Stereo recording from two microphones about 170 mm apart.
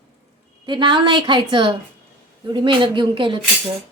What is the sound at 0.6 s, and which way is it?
A woman's voice, 25° right (ahead or behind).